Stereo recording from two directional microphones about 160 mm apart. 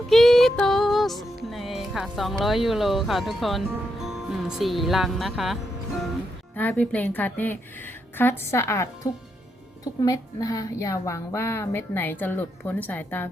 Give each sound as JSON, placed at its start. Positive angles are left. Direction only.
{"t": 0.1, "sound": "music", "side_deg": 0}
{"t": 4.0, "sound": "speech", "side_deg": 0}
{"t": 6.6, "sound": "a woman's voice", "side_deg": 10}